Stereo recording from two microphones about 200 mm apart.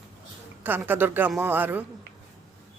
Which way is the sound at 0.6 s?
10° right (ahead or behind).